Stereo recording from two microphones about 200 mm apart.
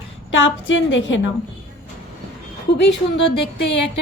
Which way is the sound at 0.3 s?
70° left (ahead or behind).